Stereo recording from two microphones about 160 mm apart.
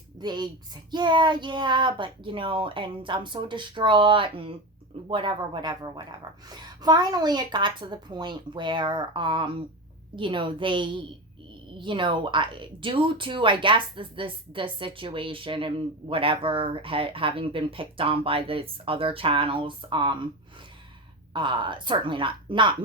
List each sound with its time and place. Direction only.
0.2 s a woman's voice: 25° right (ahead or behind)
21.3 s speech: 30° right (ahead or behind)